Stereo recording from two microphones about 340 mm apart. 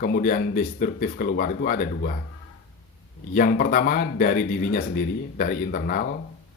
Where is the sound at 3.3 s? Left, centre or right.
Left.